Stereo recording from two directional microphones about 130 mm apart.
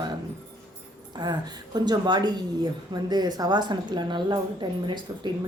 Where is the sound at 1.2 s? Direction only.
35° right (ahead or behind).